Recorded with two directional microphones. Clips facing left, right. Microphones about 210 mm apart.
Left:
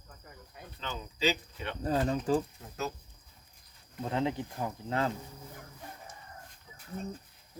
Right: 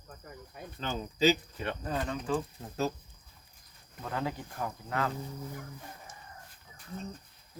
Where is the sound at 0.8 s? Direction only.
45° right (ahead or behind).